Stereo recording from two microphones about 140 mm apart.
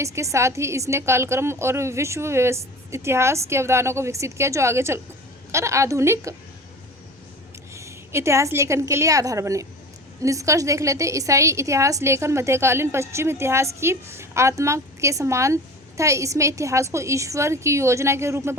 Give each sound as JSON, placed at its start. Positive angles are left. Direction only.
{"t": 0.0, "sound": "a woman's voice", "side_deg": -20}
{"t": 7.7, "sound": "a woman's voice", "side_deg": -20}